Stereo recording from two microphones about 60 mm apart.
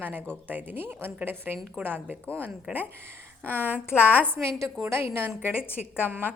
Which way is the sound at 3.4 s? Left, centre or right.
Left.